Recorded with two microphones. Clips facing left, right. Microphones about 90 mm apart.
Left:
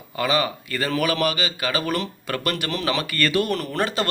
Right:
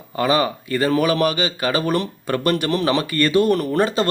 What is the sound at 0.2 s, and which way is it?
Speech, 35° right (ahead or behind).